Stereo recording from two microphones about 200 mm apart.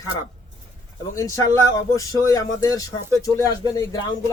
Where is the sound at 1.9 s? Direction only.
15° left (ahead or behind).